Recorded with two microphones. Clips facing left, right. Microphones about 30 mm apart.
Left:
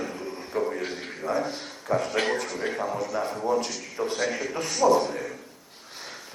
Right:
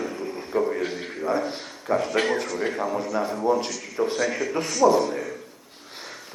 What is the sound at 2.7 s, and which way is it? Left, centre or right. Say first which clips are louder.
Speech: right 3 dB; centre.